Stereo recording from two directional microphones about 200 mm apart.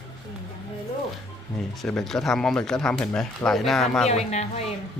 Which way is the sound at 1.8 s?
5° left (ahead or behind).